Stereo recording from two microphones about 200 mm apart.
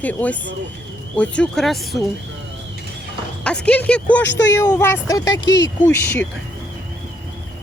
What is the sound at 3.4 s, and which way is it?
Speech, 5° left (ahead or behind).